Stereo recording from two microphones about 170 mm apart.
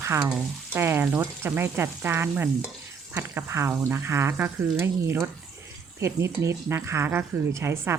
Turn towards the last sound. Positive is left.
turn(degrees=-15)  # may be behind; listen again after turning